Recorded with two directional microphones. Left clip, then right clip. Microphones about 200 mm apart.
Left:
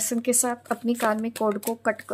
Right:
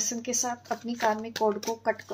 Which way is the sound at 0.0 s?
45° left (ahead or behind).